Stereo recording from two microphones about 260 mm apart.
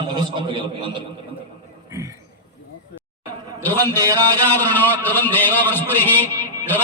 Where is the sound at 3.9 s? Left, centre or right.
Centre.